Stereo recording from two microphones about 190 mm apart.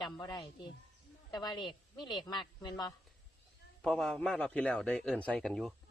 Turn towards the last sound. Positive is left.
turn(degrees=0)  # may be behind; listen again after turning